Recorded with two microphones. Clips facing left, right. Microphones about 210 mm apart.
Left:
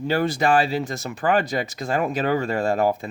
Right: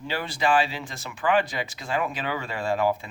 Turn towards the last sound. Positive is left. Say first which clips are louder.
# left 4 dB
turn(degrees=45)  # may be behind; listen again after turning